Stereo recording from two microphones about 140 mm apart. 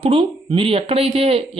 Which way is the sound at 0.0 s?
40° right (ahead or behind).